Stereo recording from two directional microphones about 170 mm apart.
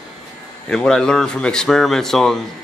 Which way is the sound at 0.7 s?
5° left (ahead or behind).